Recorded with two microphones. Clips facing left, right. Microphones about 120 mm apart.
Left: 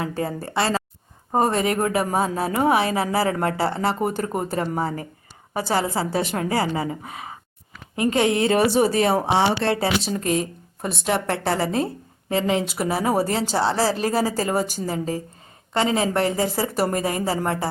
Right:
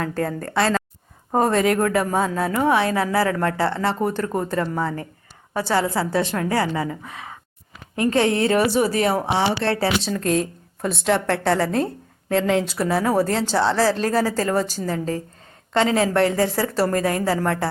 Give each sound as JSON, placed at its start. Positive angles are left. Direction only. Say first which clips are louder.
{"t": 0.0, "sound": "a woman's voice", "louder": "right 2 dB", "side_deg": 10}
{"t": 2.5, "sound": "speech", "louder": "left 1 dB", "side_deg": 25}
{"t": 2.8, "sound": "a woman's voice", "louder": "right 1 dB", "side_deg": 15}
{"t": 3.6, "sound": "a woman's voice", "louder": "right 1 dB", "side_deg": 10}
{"t": 7.9, "sound": "speech", "louder": "right 1 dB", "side_deg": 15}
{"t": 9.6, "sound": "a woman's voice", "louder": "even", "side_deg": 15}
{"t": 10.2, "sound": "a woman's voice", "louder": "right 2 dB", "side_deg": 5}